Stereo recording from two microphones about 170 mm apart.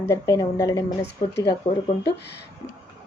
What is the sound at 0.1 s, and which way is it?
Speech, 20° left (ahead or behind).